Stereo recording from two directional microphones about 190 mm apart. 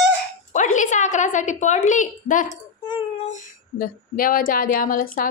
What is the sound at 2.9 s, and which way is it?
Child singing, 35° left (ahead or behind).